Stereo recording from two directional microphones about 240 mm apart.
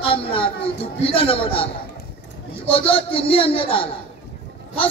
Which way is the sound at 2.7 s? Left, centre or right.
Left.